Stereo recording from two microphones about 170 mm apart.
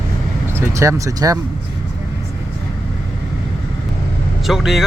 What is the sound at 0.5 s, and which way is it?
Speech, 15° right (ahead or behind).